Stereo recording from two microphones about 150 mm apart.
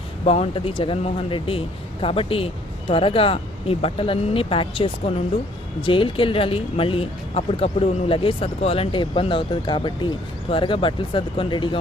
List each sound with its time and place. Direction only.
0.3 s speech: 40° left (ahead or behind)